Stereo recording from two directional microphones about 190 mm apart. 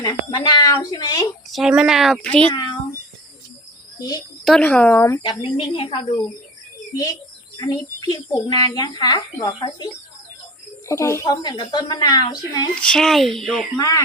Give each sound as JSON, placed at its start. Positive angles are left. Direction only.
{"t": 0.0, "sound": "speech", "side_deg": 20}
{"t": 1.5, "sound": "a child's voice", "side_deg": 0}
{"t": 4.4, "sound": "speech", "side_deg": 5}
{"t": 5.2, "sound": "a woman's voice", "side_deg": 25}
{"t": 12.8, "sound": "a child's voice", "side_deg": 5}
{"t": 13.7, "sound": "speech", "side_deg": 20}